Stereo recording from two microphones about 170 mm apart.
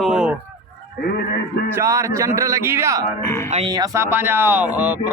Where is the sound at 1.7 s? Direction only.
15° right (ahead or behind).